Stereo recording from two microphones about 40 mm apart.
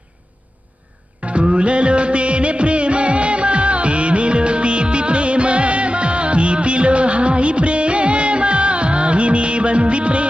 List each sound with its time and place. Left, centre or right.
1.2 s music of bollywood: right